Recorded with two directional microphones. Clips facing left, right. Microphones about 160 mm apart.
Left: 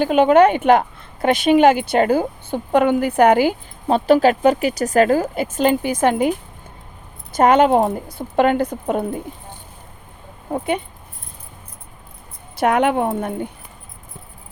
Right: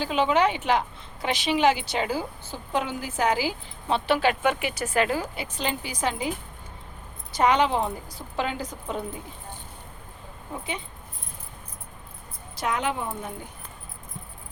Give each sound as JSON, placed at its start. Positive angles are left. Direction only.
{"t": 0.0, "sound": "speech", "side_deg": 55}
{"t": 7.3, "sound": "a woman's voice", "side_deg": 50}
{"t": 10.5, "sound": "a woman's voice", "side_deg": 60}
{"t": 12.5, "sound": "a woman's voice", "side_deg": 60}